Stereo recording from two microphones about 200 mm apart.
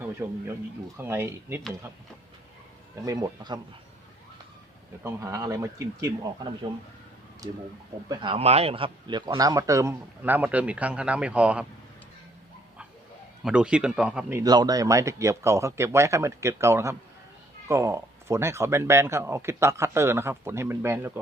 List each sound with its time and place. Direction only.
0.0 s speech: 10° right (ahead or behind)
3.0 s speech: 15° right (ahead or behind)
5.0 s speech: 15° right (ahead or behind)
13.4 s speech: 5° right (ahead or behind)